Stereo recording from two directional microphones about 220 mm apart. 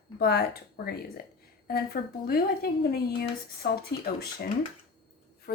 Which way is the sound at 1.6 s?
45° left (ahead or behind).